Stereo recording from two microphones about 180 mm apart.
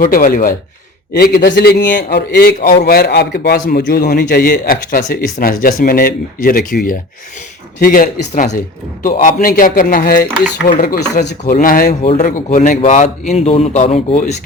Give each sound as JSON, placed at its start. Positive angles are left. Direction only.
{"t": 0.0, "sound": "a man's voice", "side_deg": 50}
{"t": 1.1, "sound": "a man's voice", "side_deg": 60}
{"t": 11.5, "sound": "a man's voice", "side_deg": 50}